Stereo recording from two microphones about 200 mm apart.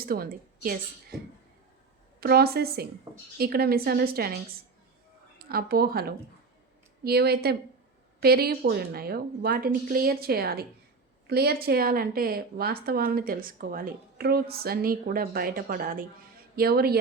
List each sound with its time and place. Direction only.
0.0 s a woman's voice: 45° right (ahead or behind)
2.2 s a woman's voice: 50° right (ahead or behind)
5.4 s a woman's voice: 50° right (ahead or behind)